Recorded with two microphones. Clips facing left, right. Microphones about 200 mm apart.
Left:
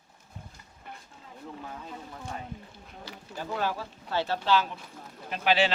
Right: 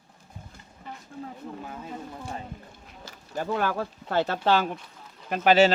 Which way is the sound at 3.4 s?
55° right (ahead or behind).